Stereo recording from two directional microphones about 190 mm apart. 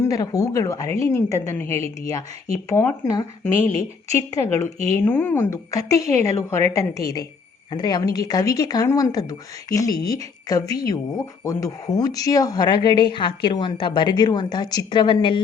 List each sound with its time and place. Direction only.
0.0 s a woman's voice: 20° left (ahead or behind)